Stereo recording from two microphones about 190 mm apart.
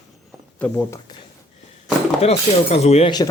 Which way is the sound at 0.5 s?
10° left (ahead or behind).